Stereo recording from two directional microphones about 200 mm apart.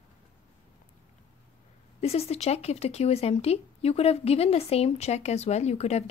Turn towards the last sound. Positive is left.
turn(degrees=35)  # may be behind; listen again after turning